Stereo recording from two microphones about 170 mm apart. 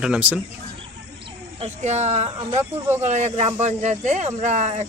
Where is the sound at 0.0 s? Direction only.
5° right (ahead or behind).